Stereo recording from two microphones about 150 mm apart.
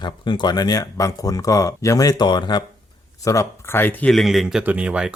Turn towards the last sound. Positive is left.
turn(degrees=-10)  # may be behind; listen again after turning